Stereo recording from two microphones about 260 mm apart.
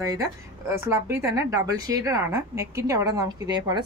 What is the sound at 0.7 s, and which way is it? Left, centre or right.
Speech, centre.